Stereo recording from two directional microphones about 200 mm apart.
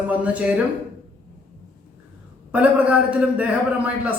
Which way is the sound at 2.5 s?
5° right (ahead or behind).